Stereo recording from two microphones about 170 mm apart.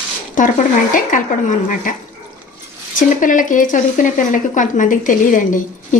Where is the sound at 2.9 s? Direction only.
50° left (ahead or behind).